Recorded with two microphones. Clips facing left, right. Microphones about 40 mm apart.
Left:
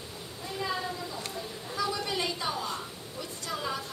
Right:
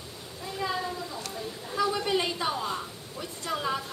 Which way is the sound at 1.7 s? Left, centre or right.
Centre.